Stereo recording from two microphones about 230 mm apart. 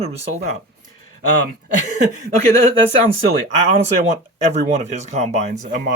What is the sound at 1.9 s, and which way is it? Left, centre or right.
Speech, right.